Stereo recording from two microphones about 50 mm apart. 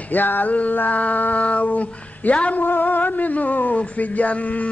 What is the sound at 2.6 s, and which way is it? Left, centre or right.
A man's voice, left.